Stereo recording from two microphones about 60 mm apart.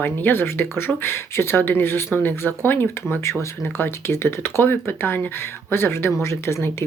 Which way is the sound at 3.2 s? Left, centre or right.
Left.